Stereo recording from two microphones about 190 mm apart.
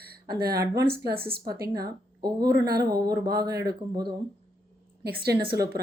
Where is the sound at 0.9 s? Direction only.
55° right (ahead or behind).